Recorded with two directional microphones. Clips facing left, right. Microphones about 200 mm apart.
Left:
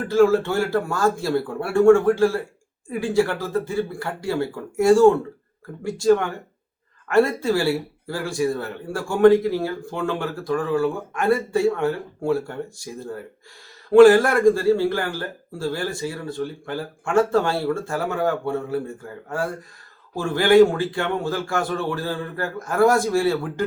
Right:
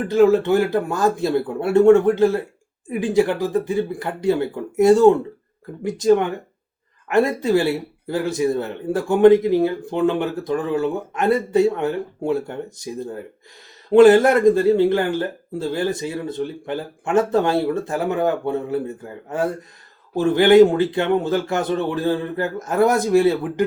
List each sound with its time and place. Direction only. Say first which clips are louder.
0.0 s speech: right 2 dB; 20° right (ahead or behind)